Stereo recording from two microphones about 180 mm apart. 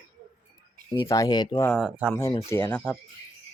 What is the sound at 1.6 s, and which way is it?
Speech, 5° left (ahead or behind).